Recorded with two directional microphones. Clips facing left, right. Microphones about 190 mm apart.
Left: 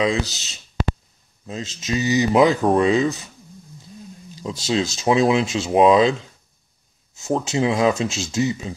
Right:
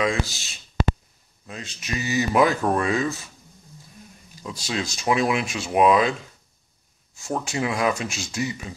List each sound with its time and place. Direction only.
0.3 s speech: 20° left (ahead or behind)
4.4 s speech: 25° left (ahead or behind)
7.2 s speech: 20° left (ahead or behind)